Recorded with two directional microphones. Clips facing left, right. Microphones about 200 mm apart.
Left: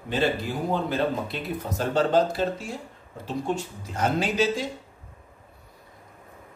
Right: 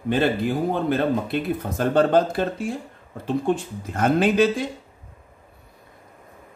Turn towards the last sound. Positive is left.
turn(degrees=-55)  # may be behind; listen again after turning